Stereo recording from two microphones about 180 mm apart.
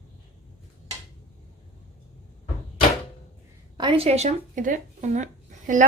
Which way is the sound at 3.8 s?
30° right (ahead or behind).